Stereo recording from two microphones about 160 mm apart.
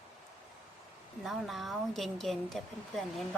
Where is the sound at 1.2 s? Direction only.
Centre (ahead or behind).